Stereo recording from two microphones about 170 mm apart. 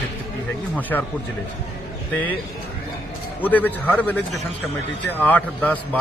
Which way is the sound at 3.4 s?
10° left (ahead or behind).